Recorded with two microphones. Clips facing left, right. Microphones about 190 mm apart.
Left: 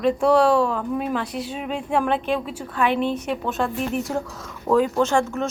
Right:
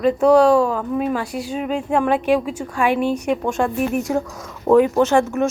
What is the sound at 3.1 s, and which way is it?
Speech, 45° right (ahead or behind).